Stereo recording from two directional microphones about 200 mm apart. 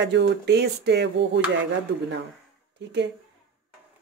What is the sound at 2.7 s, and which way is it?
Speech, 60° right (ahead or behind).